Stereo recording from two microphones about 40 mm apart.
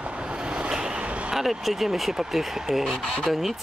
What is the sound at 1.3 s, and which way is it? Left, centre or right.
Speech, centre.